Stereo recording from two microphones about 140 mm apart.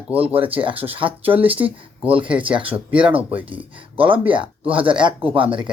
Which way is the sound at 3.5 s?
40° right (ahead or behind).